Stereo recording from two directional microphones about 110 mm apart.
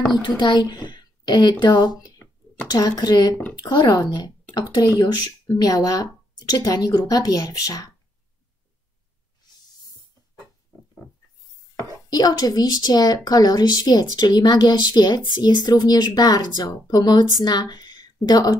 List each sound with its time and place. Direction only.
0.2 s a woman's voice: 45° left (ahead or behind)
2.1 s a sound: 15° left (ahead or behind)
2.7 s a woman's voice: 35° left (ahead or behind)
12.1 s a woman's voice: 35° left (ahead or behind)